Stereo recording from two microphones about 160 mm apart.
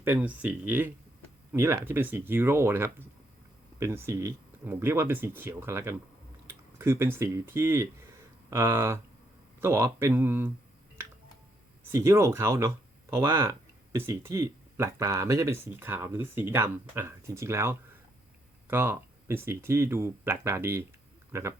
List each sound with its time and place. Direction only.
0.0 s speech: 10° right (ahead or behind)
11.9 s speech: 15° right (ahead or behind)